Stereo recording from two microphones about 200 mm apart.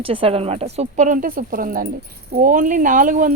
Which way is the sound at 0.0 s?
25° right (ahead or behind).